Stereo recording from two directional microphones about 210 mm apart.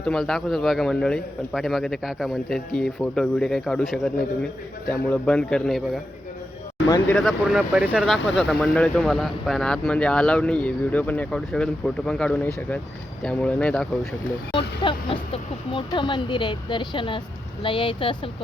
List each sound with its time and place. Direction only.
0.0 s speech: centre (ahead or behind)
6.8 s speech: 15° left (ahead or behind)
7.2 s speech: centre (ahead or behind)
14.8 s speech: 25° left (ahead or behind)